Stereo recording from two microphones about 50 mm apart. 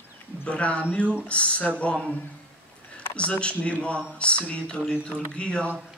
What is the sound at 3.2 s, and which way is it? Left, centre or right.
Speech, left.